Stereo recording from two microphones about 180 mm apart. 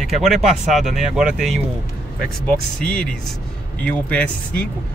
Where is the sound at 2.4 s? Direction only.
5° left (ahead or behind).